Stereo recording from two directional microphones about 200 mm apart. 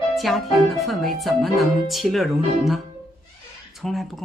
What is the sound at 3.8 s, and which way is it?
Speech, centre (ahead or behind).